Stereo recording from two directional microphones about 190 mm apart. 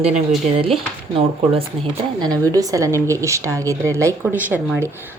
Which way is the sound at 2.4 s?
20° right (ahead or behind).